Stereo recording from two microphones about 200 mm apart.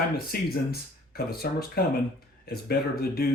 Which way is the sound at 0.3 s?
50° left (ahead or behind).